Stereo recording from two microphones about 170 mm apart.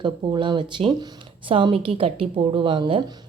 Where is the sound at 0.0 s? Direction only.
30° right (ahead or behind).